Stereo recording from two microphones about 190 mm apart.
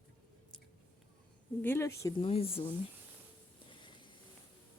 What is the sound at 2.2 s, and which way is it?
Speech, 30° left (ahead or behind).